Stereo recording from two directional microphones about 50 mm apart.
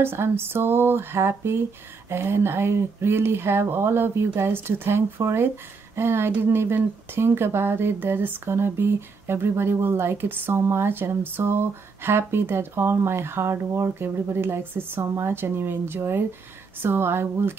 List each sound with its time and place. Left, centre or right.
0.0 s speech: right